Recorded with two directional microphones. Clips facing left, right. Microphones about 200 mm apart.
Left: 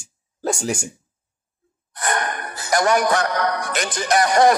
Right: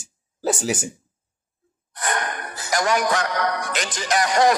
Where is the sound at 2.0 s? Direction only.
50° left (ahead or behind).